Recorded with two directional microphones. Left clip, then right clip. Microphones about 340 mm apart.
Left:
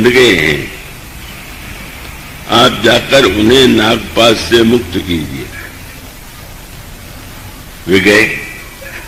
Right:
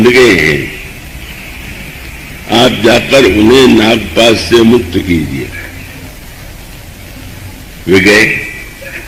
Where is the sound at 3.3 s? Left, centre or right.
Centre.